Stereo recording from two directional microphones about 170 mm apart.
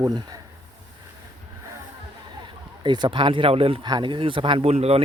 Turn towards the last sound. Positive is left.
turn(degrees=-35)  # may be behind; listen again after turning